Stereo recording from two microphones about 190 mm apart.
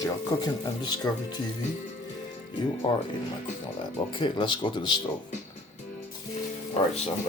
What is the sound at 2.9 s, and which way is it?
Speech, 25° left (ahead or behind).